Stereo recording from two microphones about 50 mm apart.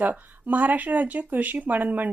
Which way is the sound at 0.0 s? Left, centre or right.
Right.